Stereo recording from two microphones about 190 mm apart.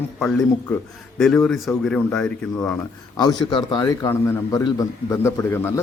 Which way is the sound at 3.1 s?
20° left (ahead or behind).